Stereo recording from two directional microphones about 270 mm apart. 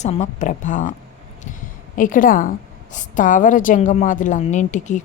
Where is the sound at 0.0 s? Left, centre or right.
Left.